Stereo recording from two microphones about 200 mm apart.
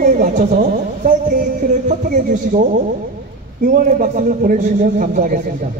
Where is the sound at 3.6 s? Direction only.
45° right (ahead or behind).